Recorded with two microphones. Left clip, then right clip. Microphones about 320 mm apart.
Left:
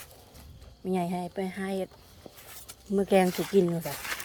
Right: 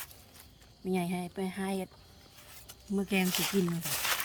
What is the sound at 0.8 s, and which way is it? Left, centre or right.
Speech, centre.